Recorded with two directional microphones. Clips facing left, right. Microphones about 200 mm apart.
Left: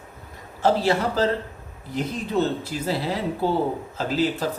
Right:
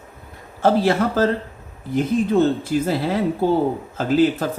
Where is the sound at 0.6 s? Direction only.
50° right (ahead or behind).